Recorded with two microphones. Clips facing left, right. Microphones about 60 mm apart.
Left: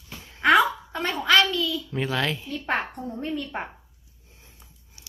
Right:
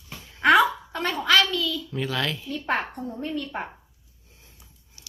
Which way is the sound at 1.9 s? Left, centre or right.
Left.